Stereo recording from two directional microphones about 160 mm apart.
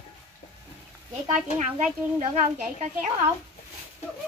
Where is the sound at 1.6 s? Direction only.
50° right (ahead or behind).